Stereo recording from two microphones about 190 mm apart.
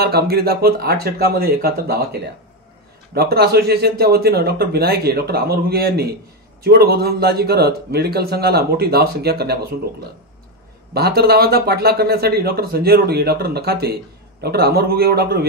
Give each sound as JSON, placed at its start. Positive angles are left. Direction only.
{"t": 0.0, "sound": "speech", "side_deg": -55}
{"t": 3.2, "sound": "speech", "side_deg": -55}
{"t": 10.9, "sound": "speech", "side_deg": -55}